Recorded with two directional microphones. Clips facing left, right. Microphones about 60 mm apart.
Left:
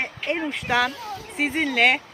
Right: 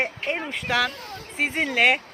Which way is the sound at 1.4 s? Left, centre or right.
Centre.